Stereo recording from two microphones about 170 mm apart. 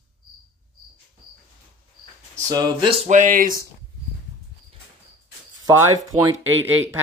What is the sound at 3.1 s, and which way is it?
Speech, 50° right (ahead or behind).